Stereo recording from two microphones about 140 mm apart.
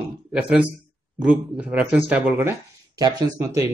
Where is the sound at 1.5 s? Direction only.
10° right (ahead or behind).